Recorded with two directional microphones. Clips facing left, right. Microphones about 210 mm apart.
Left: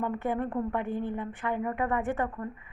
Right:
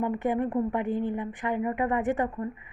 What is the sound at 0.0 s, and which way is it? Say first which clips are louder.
A woman's voice: right 3 dB; 15° right (ahead or behind).